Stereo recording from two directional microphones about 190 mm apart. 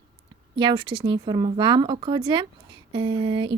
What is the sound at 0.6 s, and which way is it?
A woman's voice, 25° right (ahead or behind).